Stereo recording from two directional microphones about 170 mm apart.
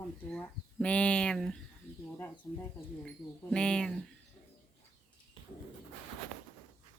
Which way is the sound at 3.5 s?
5° left (ahead or behind).